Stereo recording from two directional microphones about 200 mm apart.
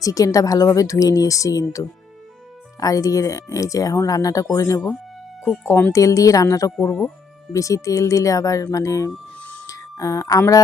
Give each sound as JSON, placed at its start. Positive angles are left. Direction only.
{"t": 0.0, "sound": "a woman's voice", "side_deg": 15}